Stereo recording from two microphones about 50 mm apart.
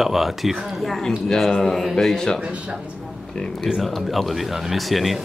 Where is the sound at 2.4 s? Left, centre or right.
Centre.